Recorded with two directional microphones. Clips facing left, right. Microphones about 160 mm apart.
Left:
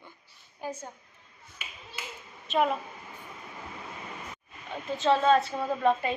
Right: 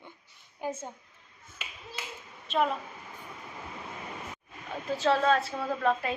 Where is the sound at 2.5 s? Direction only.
5° left (ahead or behind).